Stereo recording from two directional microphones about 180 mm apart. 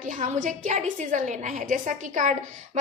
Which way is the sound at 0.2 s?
45° right (ahead or behind).